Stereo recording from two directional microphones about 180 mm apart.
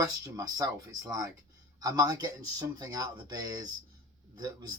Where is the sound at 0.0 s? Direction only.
20° right (ahead or behind).